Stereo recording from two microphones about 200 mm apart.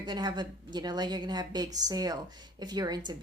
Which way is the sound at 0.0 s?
20° right (ahead or behind).